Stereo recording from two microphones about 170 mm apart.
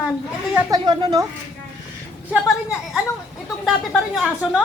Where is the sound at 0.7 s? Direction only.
25° right (ahead or behind).